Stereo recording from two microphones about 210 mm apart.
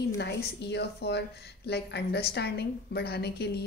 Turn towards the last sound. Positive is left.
turn(degrees=50)  # may be behind; listen again after turning